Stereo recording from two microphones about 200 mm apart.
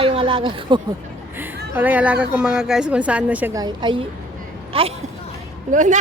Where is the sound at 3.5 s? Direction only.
20° right (ahead or behind).